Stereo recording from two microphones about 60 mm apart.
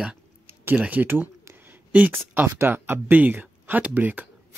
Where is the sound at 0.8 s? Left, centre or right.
Right.